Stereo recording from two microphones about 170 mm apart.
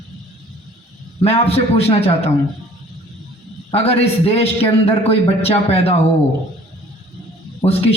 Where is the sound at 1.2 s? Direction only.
35° left (ahead or behind).